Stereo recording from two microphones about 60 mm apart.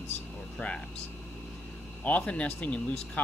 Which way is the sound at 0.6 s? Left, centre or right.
Left.